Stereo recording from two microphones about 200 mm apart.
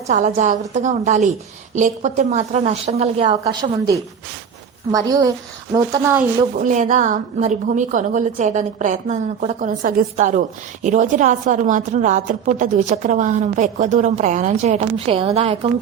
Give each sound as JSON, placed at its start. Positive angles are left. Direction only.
{"t": 0.1, "sound": "a woman's voice", "side_deg": -35}
{"t": 6.6, "sound": "a woman's voice", "side_deg": -40}